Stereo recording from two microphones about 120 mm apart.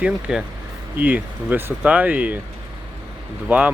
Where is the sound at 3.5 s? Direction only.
15° right (ahead or behind).